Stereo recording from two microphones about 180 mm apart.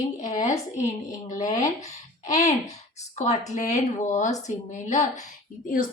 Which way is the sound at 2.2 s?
40° left (ahead or behind).